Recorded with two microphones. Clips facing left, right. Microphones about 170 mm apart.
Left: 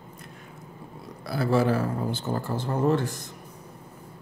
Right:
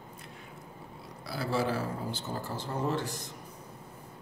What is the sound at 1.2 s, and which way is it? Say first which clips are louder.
Speech: left 8 dB; 55° left (ahead or behind).